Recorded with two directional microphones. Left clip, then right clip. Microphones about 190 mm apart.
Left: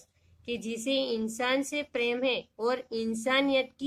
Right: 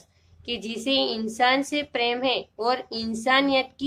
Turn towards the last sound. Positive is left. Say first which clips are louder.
# right 5 dB
turn(degrees=20)  # may be behind; listen again after turning